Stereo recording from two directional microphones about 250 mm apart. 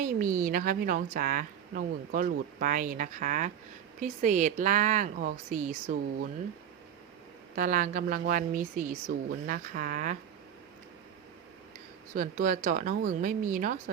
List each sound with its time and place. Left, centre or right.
0.0 s a woman's voice: right
7.5 s a woman's voice: right
12.1 s a woman's voice: right